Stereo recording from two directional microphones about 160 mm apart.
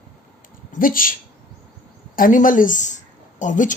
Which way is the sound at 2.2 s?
55° left (ahead or behind).